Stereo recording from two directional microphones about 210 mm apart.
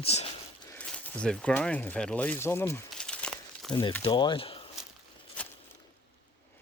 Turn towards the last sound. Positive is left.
turn(degrees=5)  # may be behind; listen again after turning